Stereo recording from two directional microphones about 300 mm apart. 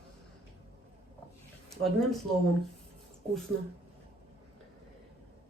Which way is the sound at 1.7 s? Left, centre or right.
Centre.